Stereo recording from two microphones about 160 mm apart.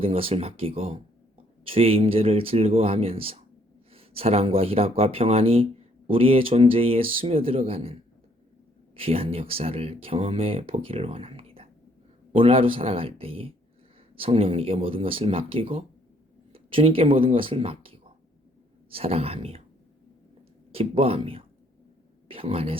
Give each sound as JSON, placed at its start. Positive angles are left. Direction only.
{"t": 0.0, "sound": "speech", "side_deg": -35}
{"t": 9.0, "sound": "speech", "side_deg": -35}
{"t": 20.7, "sound": "speech", "side_deg": -35}